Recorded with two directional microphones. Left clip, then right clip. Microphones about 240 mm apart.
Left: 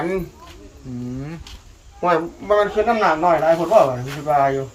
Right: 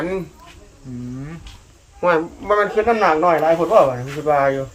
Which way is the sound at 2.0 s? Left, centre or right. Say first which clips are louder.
Right 1 dB; centre.